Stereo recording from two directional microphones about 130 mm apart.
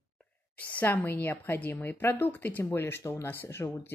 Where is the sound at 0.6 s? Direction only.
10° left (ahead or behind).